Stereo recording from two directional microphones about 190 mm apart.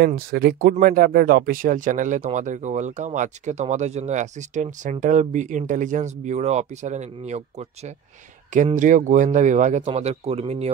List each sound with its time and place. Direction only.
0.0 s speech: 50° right (ahead or behind); by 10.7 s 35° right (ahead or behind)